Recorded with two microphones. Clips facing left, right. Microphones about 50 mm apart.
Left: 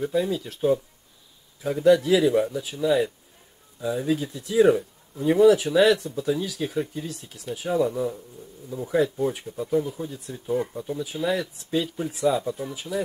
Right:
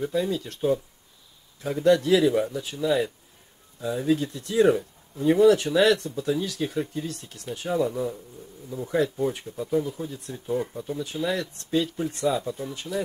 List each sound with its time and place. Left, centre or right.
0.0 s speech: centre